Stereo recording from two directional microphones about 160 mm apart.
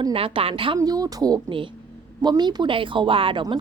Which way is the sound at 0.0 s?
35° right (ahead or behind).